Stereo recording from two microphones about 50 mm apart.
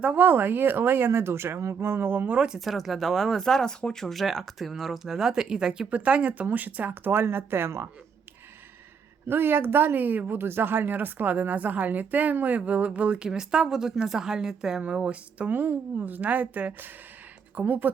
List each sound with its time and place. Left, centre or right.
0.0 s speech: right
2.6 s speech: centre
5.9 s speech: right
7.1 s speech: right
9.2 s speech: right
13.2 s a woman's voice: centre; by 17.9 s right